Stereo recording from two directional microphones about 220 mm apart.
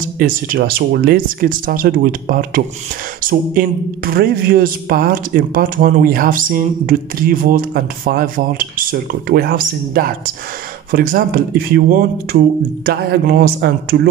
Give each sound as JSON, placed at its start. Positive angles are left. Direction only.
{"t": 0.2, "sound": "a woman's voice", "side_deg": -40}